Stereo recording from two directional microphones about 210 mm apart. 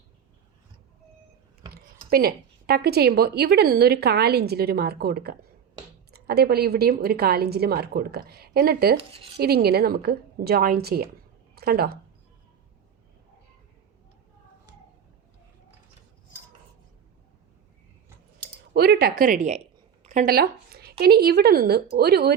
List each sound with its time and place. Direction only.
1.7 s speech: 45° right (ahead or behind)
9.0 s speech: 25° right (ahead or behind)
9.4 s speech: 50° right (ahead or behind)
18.7 s speech: 50° right (ahead or behind)
20.1 s a sound: 40° right (ahead or behind)
21.0 s speech: 50° right (ahead or behind)